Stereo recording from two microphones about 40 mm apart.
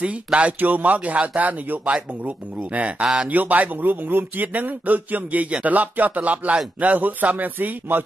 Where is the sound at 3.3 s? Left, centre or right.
Right.